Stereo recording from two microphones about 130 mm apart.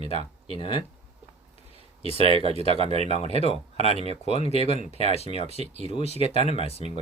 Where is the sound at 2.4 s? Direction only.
50° right (ahead or behind).